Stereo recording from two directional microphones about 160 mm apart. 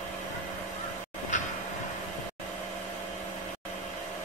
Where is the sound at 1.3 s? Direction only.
50° left (ahead or behind).